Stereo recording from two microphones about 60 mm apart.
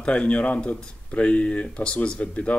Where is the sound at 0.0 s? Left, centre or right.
Left.